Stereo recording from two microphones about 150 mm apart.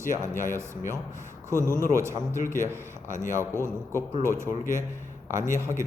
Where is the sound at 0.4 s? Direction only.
20° right (ahead or behind).